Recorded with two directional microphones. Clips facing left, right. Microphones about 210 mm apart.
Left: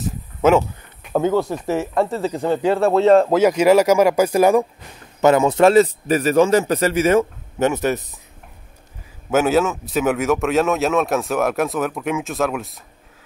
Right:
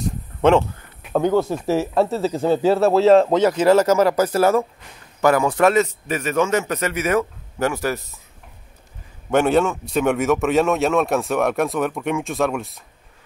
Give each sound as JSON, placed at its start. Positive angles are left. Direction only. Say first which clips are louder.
{"t": 0.0, "sound": "speech", "louder": "even", "side_deg": 5}
{"t": 3.4, "sound": "a man's voice", "louder": "left 2 dB", "side_deg": 10}
{"t": 9.3, "sound": "speech", "louder": "even", "side_deg": 5}